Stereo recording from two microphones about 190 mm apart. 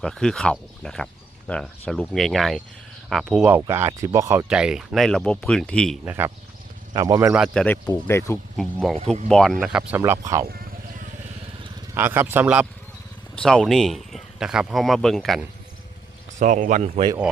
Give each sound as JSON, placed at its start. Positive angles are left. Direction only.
{"t": 0.0, "sound": "speech", "side_deg": 0}
{"t": 6.1, "sound": "speech", "side_deg": -10}
{"t": 7.3, "sound": "speech", "side_deg": 0}
{"t": 8.5, "sound": "speech", "side_deg": 0}
{"t": 9.9, "sound": "speech", "side_deg": -15}
{"t": 11.9, "sound": "speech", "side_deg": -10}
{"t": 13.3, "sound": "speech", "side_deg": 5}
{"t": 16.4, "sound": "a man's voice", "side_deg": -40}